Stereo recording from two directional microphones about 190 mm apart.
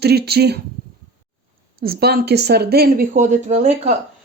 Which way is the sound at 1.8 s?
55° right (ahead or behind).